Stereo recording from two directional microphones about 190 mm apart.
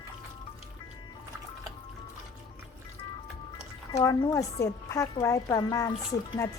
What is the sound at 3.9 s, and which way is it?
A woman's voice, 15° left (ahead or behind).